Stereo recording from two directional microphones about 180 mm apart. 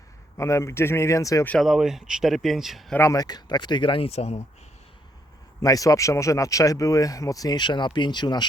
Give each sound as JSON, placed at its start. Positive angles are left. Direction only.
{"t": 0.3, "sound": "speech", "side_deg": 15}
{"t": 1.5, "sound": "speech", "side_deg": 0}
{"t": 3.0, "sound": "speech", "side_deg": 20}
{"t": 5.6, "sound": "speech", "side_deg": 20}